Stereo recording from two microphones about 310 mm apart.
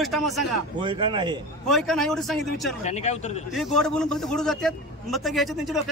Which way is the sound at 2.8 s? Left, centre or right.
Left.